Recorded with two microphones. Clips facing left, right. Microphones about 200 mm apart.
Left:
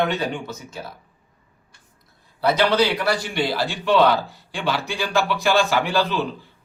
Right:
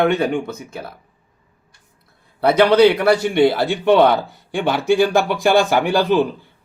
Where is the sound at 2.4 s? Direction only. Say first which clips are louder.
Right 7 dB; 60° right (ahead or behind).